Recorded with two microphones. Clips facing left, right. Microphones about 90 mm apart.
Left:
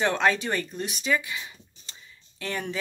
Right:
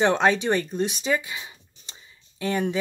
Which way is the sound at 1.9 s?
20° right (ahead or behind).